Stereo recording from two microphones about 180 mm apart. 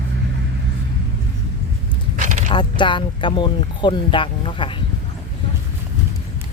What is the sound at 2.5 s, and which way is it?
Speech, 25° left (ahead or behind).